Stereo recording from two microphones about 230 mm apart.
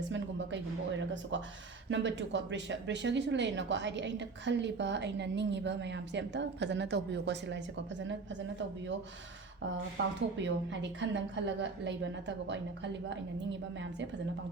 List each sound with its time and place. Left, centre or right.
0.1 s music: right
1.3 s speech: right
10.2 s speech: right